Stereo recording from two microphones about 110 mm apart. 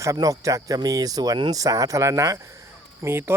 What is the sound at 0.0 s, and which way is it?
Speech, 30° right (ahead or behind).